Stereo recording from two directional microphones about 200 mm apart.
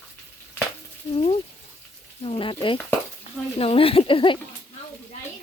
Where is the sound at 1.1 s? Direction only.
30° left (ahead or behind).